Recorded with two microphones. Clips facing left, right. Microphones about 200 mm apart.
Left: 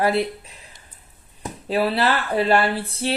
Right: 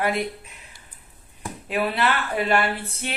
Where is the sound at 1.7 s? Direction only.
35° left (ahead or behind).